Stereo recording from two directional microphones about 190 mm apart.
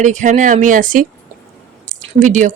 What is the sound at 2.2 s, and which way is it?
Speech, 40° right (ahead or behind).